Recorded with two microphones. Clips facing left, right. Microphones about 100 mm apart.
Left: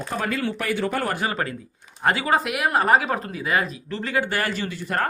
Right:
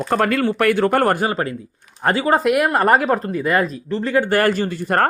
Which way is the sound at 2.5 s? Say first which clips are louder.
Right 5 dB; 50° right (ahead or behind).